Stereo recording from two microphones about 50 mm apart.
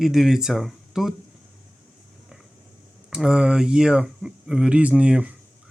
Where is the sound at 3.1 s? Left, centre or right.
Centre.